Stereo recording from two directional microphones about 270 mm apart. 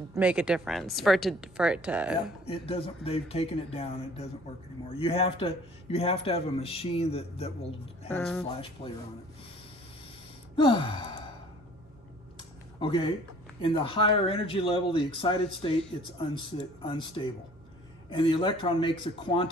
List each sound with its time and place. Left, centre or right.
0.1 s speech: centre
2.4 s a man's voice: left
8.1 s speech: centre
10.5 s gasp: centre
12.7 s a man's voice: centre